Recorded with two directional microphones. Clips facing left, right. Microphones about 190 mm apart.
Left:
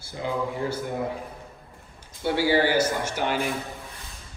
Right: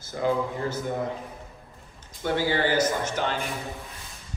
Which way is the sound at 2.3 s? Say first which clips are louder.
Left 2 dB; 10° left (ahead or behind).